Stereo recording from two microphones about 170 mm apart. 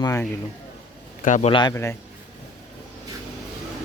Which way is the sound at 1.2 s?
45° left (ahead or behind).